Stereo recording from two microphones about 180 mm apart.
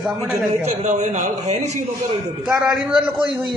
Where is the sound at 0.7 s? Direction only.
40° right (ahead or behind).